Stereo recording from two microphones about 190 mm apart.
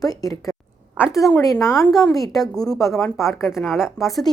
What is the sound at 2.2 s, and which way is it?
Speech, centre (ahead or behind).